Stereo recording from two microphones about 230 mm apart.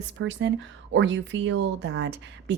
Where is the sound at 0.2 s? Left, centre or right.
Right.